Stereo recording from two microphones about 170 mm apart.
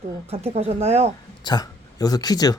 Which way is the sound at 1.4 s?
20° left (ahead or behind).